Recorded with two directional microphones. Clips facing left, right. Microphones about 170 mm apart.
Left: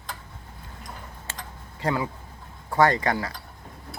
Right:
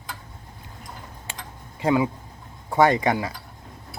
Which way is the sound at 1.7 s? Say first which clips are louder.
Right 6 dB; 15° right (ahead or behind).